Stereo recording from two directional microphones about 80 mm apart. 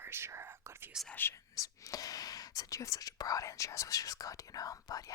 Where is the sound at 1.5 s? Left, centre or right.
Left.